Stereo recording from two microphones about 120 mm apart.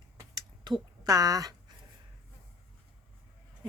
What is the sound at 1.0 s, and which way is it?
Speech, 30° right (ahead or behind).